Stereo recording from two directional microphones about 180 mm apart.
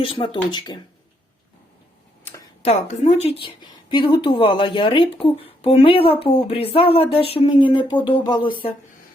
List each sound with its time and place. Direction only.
0.0 s a woman's voice: 30° left (ahead or behind)
2.6 s a woman's voice: 40° left (ahead or behind)